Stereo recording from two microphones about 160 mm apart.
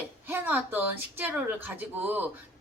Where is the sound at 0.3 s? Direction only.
10° right (ahead or behind).